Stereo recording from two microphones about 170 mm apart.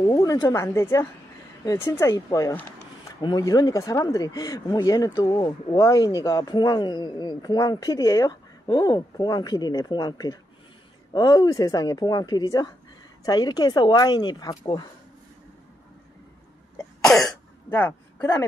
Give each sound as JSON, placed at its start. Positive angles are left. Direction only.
{"t": 0.0, "sound": "speech", "side_deg": 20}
{"t": 17.6, "sound": "speech", "side_deg": 10}